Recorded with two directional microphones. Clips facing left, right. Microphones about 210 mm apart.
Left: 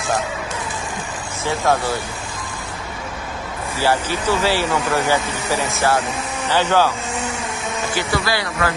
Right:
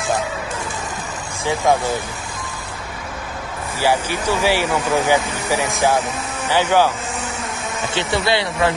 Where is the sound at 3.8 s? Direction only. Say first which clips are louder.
Even; 15° right (ahead or behind).